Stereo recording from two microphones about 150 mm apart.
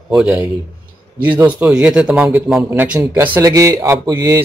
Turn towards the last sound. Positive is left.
turn(degrees=-25)  # may be behind; listen again after turning